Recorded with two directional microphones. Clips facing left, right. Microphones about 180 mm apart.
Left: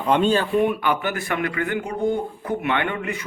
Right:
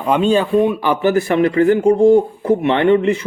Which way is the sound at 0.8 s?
30° right (ahead or behind).